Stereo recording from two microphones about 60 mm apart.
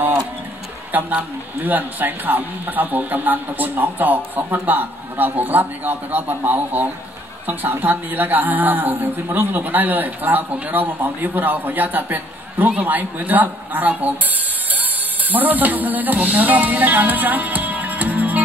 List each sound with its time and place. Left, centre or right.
0.9 s a man's voice: right
15.3 s speech: right